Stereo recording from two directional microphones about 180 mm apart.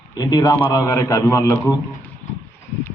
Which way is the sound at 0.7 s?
20° left (ahead or behind).